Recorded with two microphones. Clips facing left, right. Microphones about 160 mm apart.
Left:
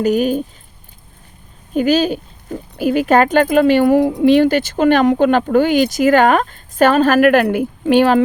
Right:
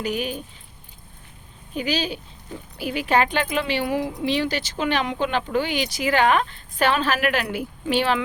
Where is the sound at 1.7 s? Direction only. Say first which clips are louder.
Left 11 dB; 50° left (ahead or behind).